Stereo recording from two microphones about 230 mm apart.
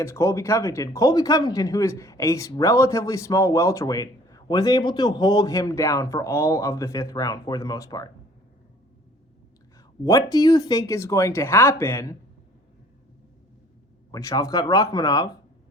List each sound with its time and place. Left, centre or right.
0.0 s speech: centre
10.0 s speech: centre
14.1 s speech: centre